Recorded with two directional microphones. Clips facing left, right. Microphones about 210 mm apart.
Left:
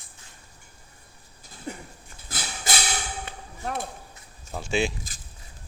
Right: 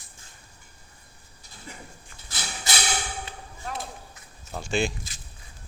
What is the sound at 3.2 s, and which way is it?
Chop, 55° left (ahead or behind).